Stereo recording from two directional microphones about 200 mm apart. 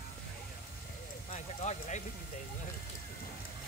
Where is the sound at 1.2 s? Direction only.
35° left (ahead or behind).